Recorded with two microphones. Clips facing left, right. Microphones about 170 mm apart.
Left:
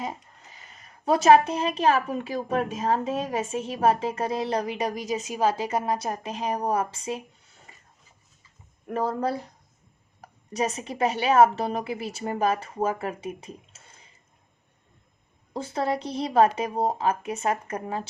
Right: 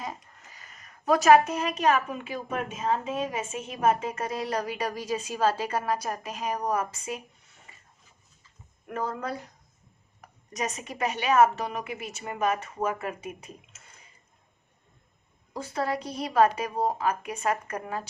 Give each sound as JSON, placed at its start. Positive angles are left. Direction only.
{"t": 0.0, "sound": "a woman's voice", "side_deg": 25}
{"t": 8.9, "sound": "a woman's voice", "side_deg": 30}
{"t": 15.5, "sound": "a woman's voice", "side_deg": 25}